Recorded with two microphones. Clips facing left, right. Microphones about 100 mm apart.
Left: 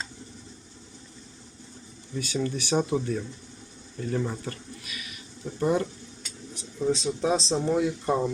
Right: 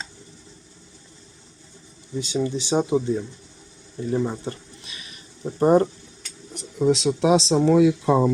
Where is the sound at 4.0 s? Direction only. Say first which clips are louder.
Right 5 dB; 20° right (ahead or behind); by 5.8 s 45° right (ahead or behind).